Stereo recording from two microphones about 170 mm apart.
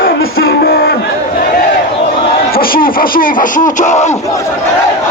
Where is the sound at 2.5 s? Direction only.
60° left (ahead or behind); by 4.1 s 45° left (ahead or behind).